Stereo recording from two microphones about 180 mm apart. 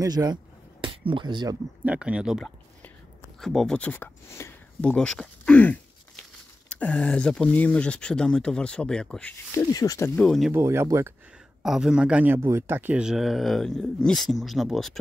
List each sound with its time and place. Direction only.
0.0 s speech: 20° right (ahead or behind)
1.9 s speech: 5° right (ahead or behind)
9.5 s speech: 15° left (ahead or behind)
10.5 s speech: 15° right (ahead or behind)
11.6 s speech: 5° right (ahead or behind)